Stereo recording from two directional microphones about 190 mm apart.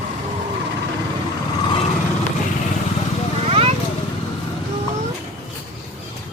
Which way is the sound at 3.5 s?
30° right (ahead or behind).